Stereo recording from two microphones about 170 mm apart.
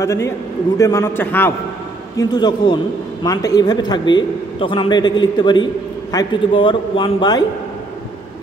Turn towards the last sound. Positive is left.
turn(degrees=25)  # may be behind; listen again after turning